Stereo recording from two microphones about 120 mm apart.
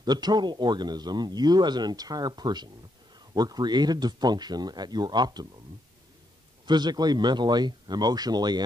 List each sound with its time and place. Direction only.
0.0 s a man's voice: 35° right (ahead or behind)
6.6 s a man's voice: 35° right (ahead or behind)